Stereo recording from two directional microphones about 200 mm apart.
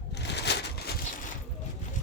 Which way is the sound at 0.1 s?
55° left (ahead or behind).